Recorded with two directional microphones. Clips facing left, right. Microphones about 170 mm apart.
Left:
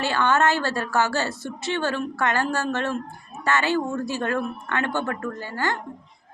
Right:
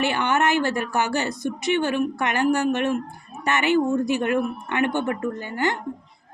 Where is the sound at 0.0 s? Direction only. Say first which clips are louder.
Even; 20° right (ahead or behind).